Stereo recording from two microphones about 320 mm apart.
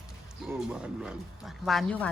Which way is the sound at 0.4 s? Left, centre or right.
Centre.